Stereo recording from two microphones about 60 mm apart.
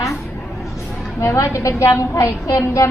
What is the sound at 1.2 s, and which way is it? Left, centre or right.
A woman's voice, left.